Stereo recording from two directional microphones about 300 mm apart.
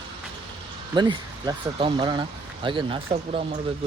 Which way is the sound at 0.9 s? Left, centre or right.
Centre.